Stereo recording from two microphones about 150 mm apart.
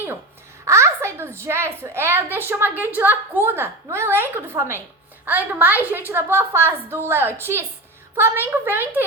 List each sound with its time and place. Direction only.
0.6 s a woman's voice: 20° right (ahead or behind)